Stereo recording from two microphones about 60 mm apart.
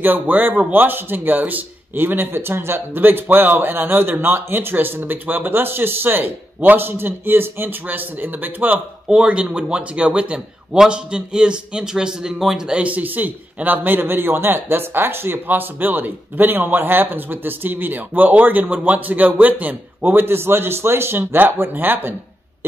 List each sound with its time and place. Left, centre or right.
0.0 s a man's voice: right
9.1 s a man's voice: centre
12.8 s a man's voice: right